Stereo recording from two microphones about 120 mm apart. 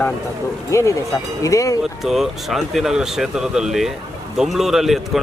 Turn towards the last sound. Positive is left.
turn(degrees=0)  # may be behind; listen again after turning